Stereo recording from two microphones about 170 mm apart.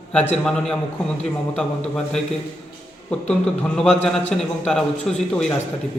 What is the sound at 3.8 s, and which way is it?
Speech, 5° left (ahead or behind).